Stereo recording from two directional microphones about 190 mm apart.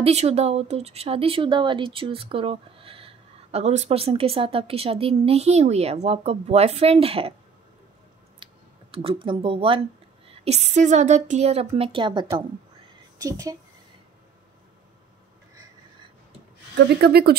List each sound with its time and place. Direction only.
0.0 s speech: 35° right (ahead or behind)
8.9 s speech: 25° right (ahead or behind)
10.2 s a sound: 30° right (ahead or behind)
10.7 s a woman's voice: 40° right (ahead or behind); by 13.6 s 15° right (ahead or behind)
16.7 s speech: 55° right (ahead or behind)